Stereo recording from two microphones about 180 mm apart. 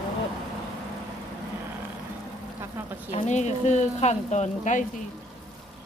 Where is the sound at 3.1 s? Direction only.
40° left (ahead or behind).